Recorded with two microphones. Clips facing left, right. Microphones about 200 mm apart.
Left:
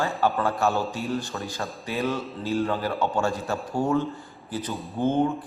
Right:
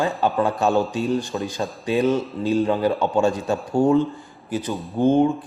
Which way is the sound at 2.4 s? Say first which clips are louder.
Right 6 dB; 20° right (ahead or behind).